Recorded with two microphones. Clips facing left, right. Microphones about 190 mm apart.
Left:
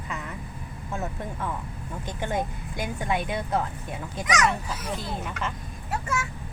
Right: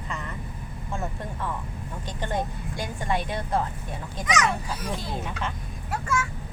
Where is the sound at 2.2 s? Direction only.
10° left (ahead or behind).